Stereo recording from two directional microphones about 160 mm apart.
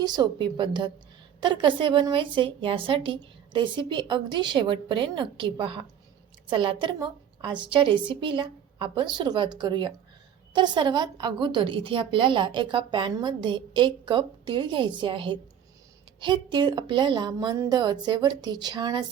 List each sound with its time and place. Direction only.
0.0 s a woman's voice: 25° right (ahead or behind)